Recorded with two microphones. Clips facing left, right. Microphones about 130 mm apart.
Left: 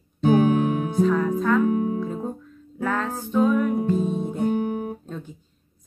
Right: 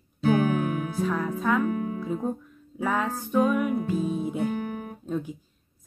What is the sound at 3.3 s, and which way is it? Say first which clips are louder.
Speech: left 3 dB; 10° right (ahead or behind).